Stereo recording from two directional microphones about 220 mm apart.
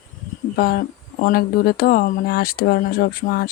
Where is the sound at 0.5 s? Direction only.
45° left (ahead or behind).